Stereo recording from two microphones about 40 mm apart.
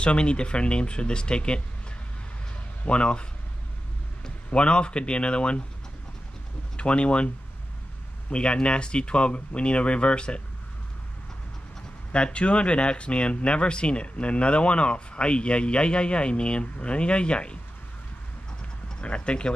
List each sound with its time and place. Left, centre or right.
0.0 s speech: left
4.5 s speech: left
6.8 s speech: left
8.3 s speech: left
12.1 s speech: left
19.0 s speech: left